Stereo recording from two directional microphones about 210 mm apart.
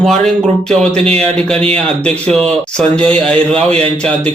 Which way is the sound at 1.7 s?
5° left (ahead or behind).